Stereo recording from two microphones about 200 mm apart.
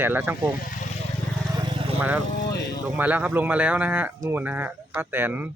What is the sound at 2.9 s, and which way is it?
Speech, 10° right (ahead or behind).